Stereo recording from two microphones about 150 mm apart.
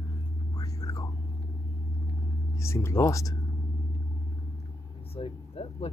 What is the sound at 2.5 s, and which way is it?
Speech, 20° left (ahead or behind).